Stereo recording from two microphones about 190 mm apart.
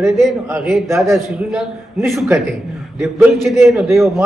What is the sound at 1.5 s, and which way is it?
A man's voice, centre (ahead or behind).